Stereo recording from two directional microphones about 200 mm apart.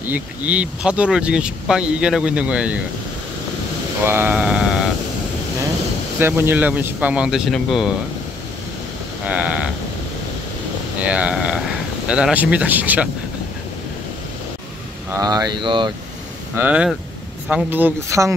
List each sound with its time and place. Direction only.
0.0 s speech: 5° right (ahead or behind)
4.0 s speech: 10° right (ahead or behind)
6.1 s speech: 10° right (ahead or behind)
9.2 s speech: 5° right (ahead or behind)
11.0 s speech: 5° right (ahead or behind)
15.0 s speech: 15° right (ahead or behind)
16.5 s speech: 5° right (ahead or behind)